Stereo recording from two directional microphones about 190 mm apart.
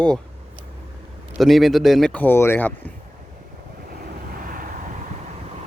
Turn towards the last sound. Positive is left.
turn(degrees=-45)  # may be behind; listen again after turning